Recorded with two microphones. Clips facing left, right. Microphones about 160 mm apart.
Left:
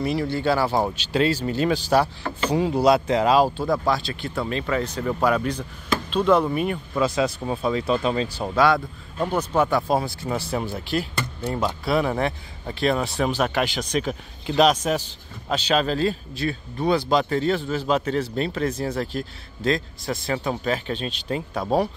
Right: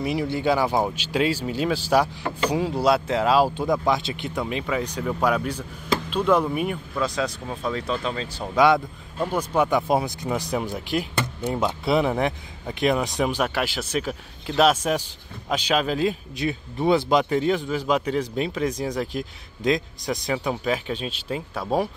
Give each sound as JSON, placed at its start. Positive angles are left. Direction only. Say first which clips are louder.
{"t": 0.0, "sound": "a man's voice", "louder": "left 1 dB", "side_deg": -15}
{"t": 3.8, "sound": "a man's voice", "louder": "even", "side_deg": -20}
{"t": 7.0, "sound": "speech", "louder": "left 4 dB", "side_deg": 5}
{"t": 8.5, "sound": "a man's voice", "louder": "right 1 dB", "side_deg": -20}